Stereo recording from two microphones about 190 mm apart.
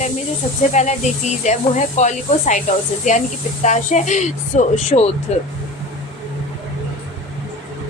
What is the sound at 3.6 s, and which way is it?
A woman's voice, 40° left (ahead or behind).